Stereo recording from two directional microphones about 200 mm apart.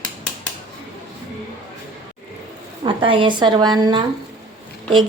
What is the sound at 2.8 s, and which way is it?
Speech, 25° right (ahead or behind).